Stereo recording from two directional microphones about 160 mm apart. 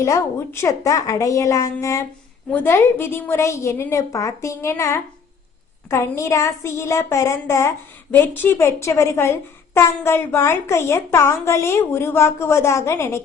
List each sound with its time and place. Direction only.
0.0 s a woman's voice: 15° left (ahead or behind)